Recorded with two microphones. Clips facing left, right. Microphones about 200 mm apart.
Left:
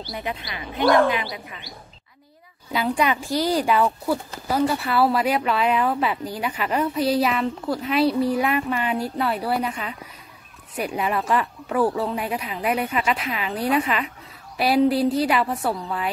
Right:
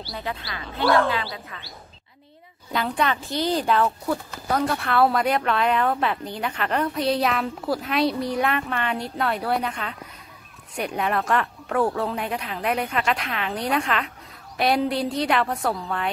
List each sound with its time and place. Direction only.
0.1 s speech: 15° left (ahead or behind)
2.7 s speech: 10° left (ahead or behind)